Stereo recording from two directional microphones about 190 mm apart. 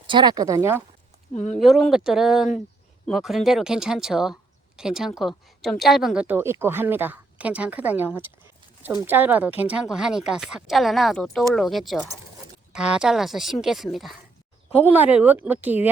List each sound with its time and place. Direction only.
0.1 s speech: 25° right (ahead or behind)
1.3 s speech: 35° left (ahead or behind)
1.5 s a woman's voice: centre (ahead or behind)